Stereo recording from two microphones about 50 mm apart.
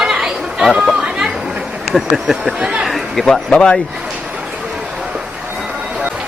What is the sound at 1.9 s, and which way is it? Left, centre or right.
Speech, centre.